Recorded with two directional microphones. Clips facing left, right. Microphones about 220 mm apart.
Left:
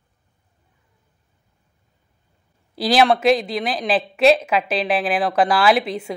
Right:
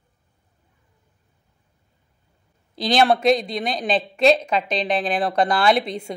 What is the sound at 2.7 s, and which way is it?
A woman's voice, 5° left (ahead or behind).